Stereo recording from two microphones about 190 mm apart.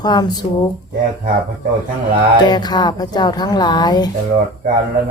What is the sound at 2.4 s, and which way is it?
Speech, 20° left (ahead or behind).